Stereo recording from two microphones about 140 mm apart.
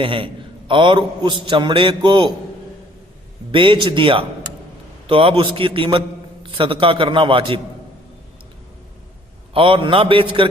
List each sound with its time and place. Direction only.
0.0 s a man's voice: 40° right (ahead or behind)
3.5 s a man's voice: 35° right (ahead or behind)
9.6 s a man's voice: 40° right (ahead or behind)